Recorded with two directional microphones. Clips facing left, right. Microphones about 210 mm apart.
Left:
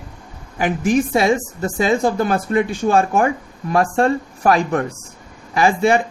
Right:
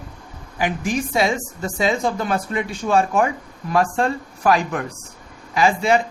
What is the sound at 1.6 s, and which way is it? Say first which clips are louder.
Speech: left 3 dB; 50° left (ahead or behind).